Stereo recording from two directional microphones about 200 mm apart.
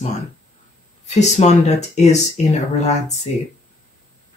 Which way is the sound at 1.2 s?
35° left (ahead or behind).